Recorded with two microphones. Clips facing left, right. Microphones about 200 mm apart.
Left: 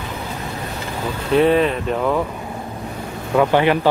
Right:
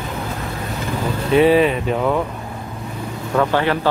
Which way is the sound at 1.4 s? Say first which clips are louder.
Right 2 dB; 5° right (ahead or behind).